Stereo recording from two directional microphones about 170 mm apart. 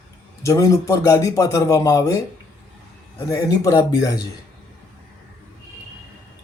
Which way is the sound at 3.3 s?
20° left (ahead or behind).